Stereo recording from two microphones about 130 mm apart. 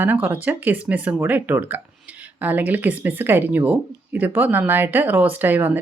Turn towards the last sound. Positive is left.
turn(degrees=-15)  # may be behind; listen again after turning